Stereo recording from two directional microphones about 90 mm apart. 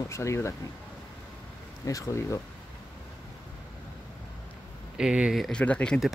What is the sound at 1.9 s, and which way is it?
Speech, 35° left (ahead or behind).